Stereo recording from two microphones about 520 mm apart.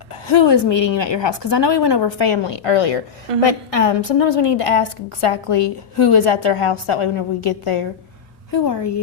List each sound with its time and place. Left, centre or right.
0.3 s a woman's voice: left
8.5 s a woman's voice: left